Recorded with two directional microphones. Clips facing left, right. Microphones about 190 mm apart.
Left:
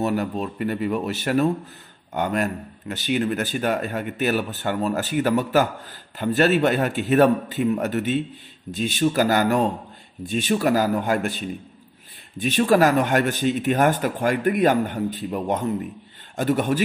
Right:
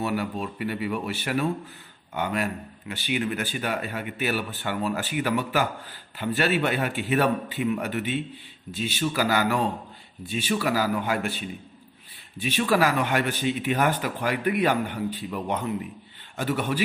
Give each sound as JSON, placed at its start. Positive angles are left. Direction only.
{"t": 0.0, "sound": "a man's voice", "side_deg": 45}